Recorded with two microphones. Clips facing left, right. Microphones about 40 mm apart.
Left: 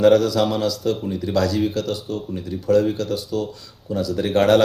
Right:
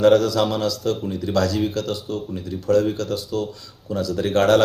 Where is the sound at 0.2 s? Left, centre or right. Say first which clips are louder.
Left 1 dB; centre.